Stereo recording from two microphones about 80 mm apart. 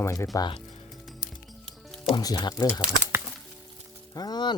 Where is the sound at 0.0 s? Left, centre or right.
Left.